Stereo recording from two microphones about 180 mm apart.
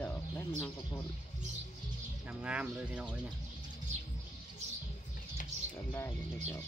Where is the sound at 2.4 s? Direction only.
5° right (ahead or behind).